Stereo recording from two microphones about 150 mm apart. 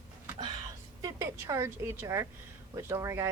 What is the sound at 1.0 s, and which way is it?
Speech, 20° right (ahead or behind).